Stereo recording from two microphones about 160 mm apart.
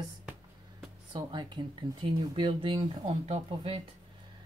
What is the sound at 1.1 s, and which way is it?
Speech, 30° right (ahead or behind).